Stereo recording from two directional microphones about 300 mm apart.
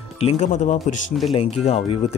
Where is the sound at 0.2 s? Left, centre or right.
Left.